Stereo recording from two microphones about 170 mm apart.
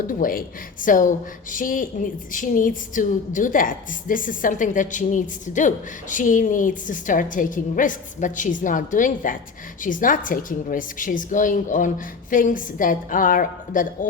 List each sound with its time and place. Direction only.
0.1 s a woman's voice: 55° left (ahead or behind)